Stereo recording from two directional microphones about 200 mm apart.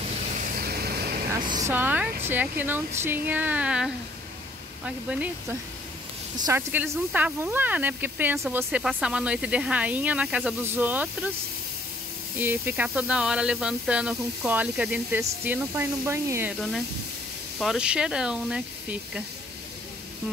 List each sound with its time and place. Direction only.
0.4 s vehicle: 50° right (ahead or behind)
1.3 s speech: 20° right (ahead or behind)
12.4 s speech: 10° right (ahead or behind)
16.5 s speech: centre (ahead or behind)